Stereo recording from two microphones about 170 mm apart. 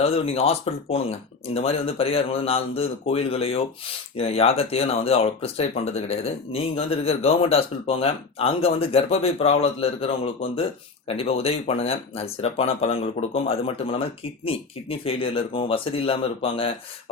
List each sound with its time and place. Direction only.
0.0 s speech: 35° left (ahead or behind)